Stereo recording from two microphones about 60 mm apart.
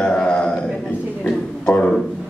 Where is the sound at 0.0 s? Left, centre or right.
Centre.